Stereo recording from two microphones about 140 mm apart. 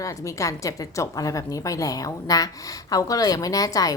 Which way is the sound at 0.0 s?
20° left (ahead or behind).